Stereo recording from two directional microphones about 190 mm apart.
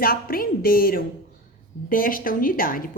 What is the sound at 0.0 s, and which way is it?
A woman's voice, 50° left (ahead or behind).